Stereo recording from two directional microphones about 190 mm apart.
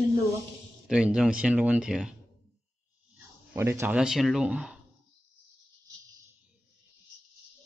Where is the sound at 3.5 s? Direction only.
15° right (ahead or behind).